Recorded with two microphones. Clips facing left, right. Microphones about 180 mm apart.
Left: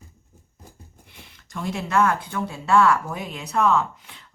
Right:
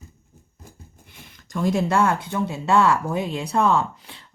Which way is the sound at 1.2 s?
45° right (ahead or behind).